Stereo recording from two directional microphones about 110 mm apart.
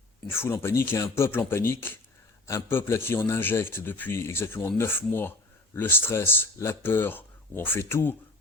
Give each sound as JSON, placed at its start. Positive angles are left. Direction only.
{"t": 0.3, "sound": "speech", "side_deg": 20}